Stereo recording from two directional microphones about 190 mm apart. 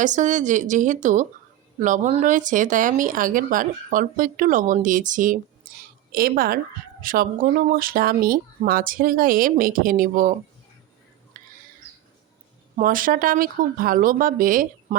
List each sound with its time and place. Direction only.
0.0 s speech: 40° right (ahead or behind)
11.3 s a sound: 45° right (ahead or behind)
12.7 s speech: 45° right (ahead or behind)